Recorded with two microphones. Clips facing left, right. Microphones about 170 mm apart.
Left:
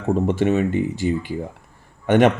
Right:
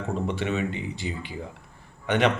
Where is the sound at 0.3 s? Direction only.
45° left (ahead or behind).